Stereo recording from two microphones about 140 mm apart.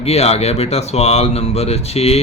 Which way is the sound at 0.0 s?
50° left (ahead or behind).